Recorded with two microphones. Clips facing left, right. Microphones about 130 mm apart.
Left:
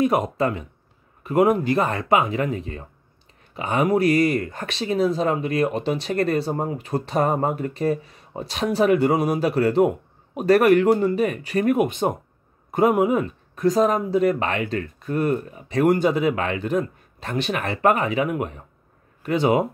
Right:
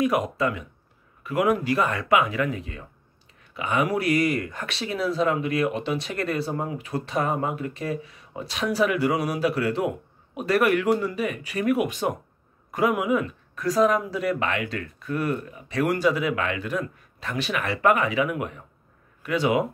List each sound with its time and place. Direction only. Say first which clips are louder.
0.0 s speech: left 3 dB; 30° left (ahead or behind); by 4.0 s 45° left (ahead or behind)
4.4 s speech: left 3 dB; 25° left (ahead or behind)
5.7 s speech: left 3 dB; 40° left (ahead or behind)
6.2 s speech: left 5 dB; 30° left (ahead or behind)
7.2 s speech: left 4 dB; 45° left (ahead or behind)
9.0 s speech: left 4 dB; 50° left (ahead or behind)
9.4 s speech: left 4 dB; 30° left (ahead or behind)
9.8 s speech: left 8 dB; 45° left (ahead or behind)
11.9 s speech: left 3 dB; 25° left (ahead or behind)
12.7 s speech: left 4 dB; 45° left (ahead or behind)
13.6 s speech: left 2 dB; 25° left (ahead or behind)
17.5 s speech: left 1 dB; 40° left (ahead or behind)